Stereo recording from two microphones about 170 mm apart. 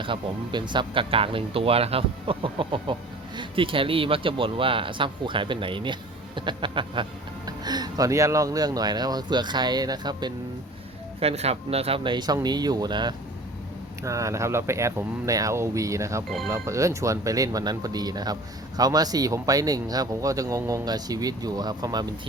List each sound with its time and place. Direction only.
0.0 s speech: 30° right (ahead or behind)
11.2 s speech: 35° right (ahead or behind)